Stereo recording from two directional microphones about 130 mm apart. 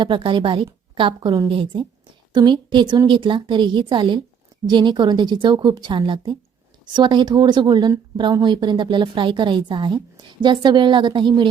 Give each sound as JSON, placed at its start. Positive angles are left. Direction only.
{"t": 0.0, "sound": "speech", "side_deg": -40}